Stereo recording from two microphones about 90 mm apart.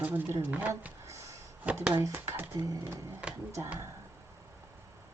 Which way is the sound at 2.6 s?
35° right (ahead or behind).